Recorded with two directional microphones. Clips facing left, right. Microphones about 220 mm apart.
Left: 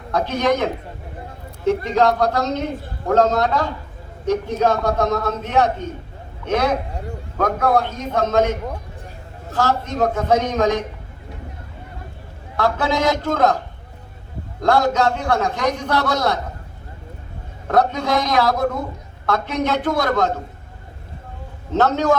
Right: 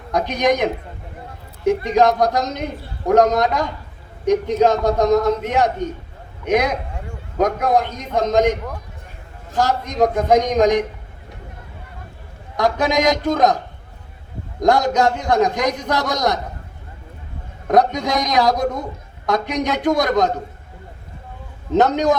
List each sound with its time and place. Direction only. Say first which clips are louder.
0.1 s a man's voice: right 1 dB; 15° right (ahead or behind)
9.6 s a man's voice: right 2 dB; 15° right (ahead or behind)
12.5 s a man's voice: right 2 dB; 15° right (ahead or behind)
14.6 s a man's voice: right 1 dB; 15° right (ahead or behind)
17.7 s a man's voice: right 2 dB; 15° right (ahead or behind)
21.7 s a man's voice: right 2 dB; 15° right (ahead or behind)